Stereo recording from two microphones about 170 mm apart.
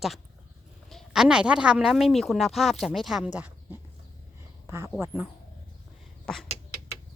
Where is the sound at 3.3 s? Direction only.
10° right (ahead or behind).